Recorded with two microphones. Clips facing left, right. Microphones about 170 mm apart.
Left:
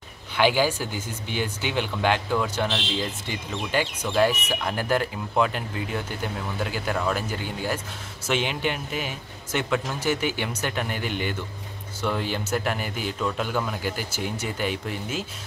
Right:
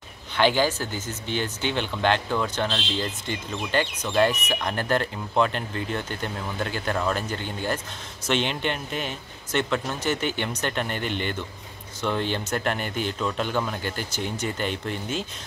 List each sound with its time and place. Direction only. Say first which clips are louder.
0.4 s speech: even; 10° left (ahead or behind)